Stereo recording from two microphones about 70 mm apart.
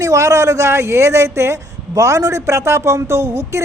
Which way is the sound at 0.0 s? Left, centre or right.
Right.